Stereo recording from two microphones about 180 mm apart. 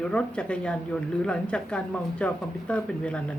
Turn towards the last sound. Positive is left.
turn(degrees=5)  # may be behind; listen again after turning